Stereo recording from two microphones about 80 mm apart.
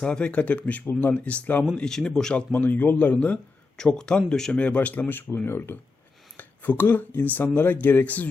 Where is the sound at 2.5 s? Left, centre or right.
Left.